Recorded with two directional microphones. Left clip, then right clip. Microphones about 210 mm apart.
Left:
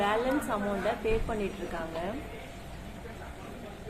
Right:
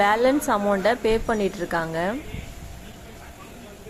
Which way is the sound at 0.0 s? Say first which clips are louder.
Right 9 dB; 50° right (ahead or behind).